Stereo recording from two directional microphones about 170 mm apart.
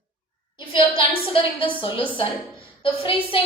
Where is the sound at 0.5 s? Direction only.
30° left (ahead or behind).